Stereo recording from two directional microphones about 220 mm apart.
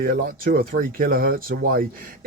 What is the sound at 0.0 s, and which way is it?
Speech, 40° right (ahead or behind).